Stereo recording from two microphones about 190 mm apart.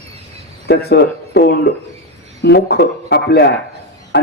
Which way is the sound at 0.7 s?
55° left (ahead or behind).